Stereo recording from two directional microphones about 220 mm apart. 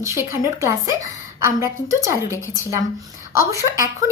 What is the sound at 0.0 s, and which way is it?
Speech, 15° right (ahead or behind).